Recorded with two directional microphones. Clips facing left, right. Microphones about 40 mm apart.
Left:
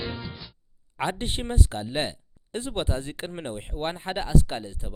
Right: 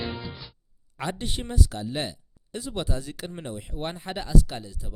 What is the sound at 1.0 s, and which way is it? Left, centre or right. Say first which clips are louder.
Speech: left 3 dB; left.